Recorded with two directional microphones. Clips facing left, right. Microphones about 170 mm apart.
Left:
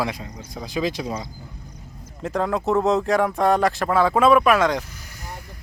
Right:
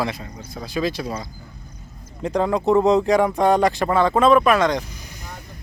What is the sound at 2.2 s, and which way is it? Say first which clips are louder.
Speech: right 3 dB; centre (ahead or behind).